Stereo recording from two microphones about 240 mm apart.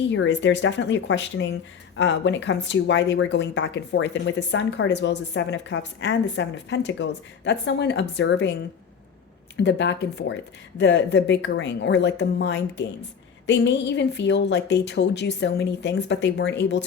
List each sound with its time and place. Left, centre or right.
0.1 s speech: left
9.6 s speech: left